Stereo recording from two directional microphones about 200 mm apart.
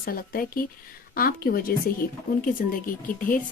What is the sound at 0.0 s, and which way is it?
Speech, 45° left (ahead or behind).